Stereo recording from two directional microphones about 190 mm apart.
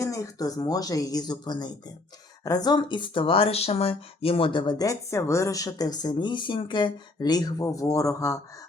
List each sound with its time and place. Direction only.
0.0 s speech: 15° left (ahead or behind)